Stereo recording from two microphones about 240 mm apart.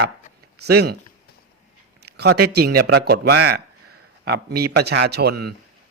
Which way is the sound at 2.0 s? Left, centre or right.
Right.